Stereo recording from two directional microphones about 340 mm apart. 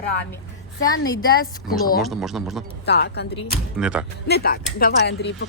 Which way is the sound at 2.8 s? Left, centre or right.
Left.